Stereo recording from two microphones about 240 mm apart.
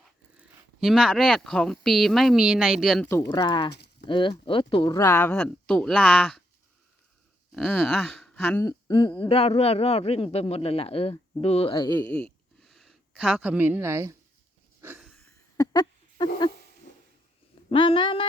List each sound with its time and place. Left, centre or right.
0.3 s speech: centre
3.1 s speech: centre
7.5 s speech: centre
12.0 s a sound: centre
15.5 s a sound: centre
17.7 s speech: left